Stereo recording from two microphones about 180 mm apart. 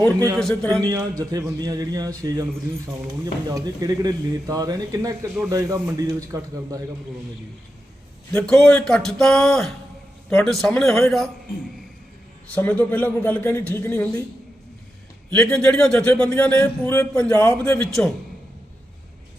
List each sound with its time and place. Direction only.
0.3 s speech: 5° left (ahead or behind)
0.8 s a man's voice: 20° right (ahead or behind)
3.5 s a man's voice: 20° right (ahead or behind)
8.3 s speech: 5° left (ahead or behind)
12.5 s speech: 10° left (ahead or behind)
15.3 s speech: 5° left (ahead or behind)
17.6 s speech: 5° left (ahead or behind)